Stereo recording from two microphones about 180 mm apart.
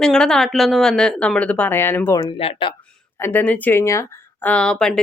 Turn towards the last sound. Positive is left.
turn(degrees=5)  # may be behind; listen again after turning